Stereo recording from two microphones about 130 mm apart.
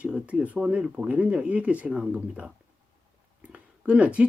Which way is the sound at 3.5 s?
10° right (ahead or behind).